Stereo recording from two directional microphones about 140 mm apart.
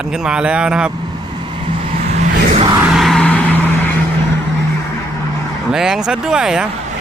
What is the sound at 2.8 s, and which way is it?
Vehicle, centre (ahead or behind).